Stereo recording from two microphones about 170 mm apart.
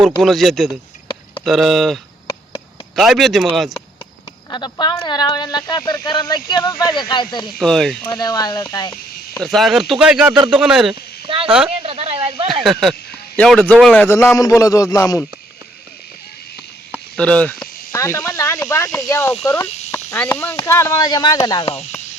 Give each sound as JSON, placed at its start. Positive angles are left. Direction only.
{"t": 0.0, "sound": "speech", "side_deg": 0}
{"t": 4.5, "sound": "speech", "side_deg": 25}
{"t": 7.6, "sound": "speech", "side_deg": 0}
{"t": 8.0, "sound": "speech", "side_deg": 20}
{"t": 8.9, "sound": "speech", "side_deg": 5}
{"t": 11.3, "sound": "speech", "side_deg": -30}
{"t": 12.6, "sound": "speech", "side_deg": 0}
{"t": 17.2, "sound": "speech", "side_deg": 5}
{"t": 19.6, "sound": "speech", "side_deg": 40}
{"t": 19.9, "sound": "speech", "side_deg": 10}